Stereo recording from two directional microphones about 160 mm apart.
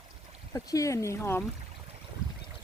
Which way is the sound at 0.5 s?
20° left (ahead or behind).